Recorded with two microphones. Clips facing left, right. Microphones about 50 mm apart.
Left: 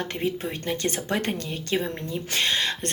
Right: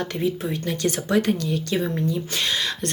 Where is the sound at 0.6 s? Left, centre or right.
Left.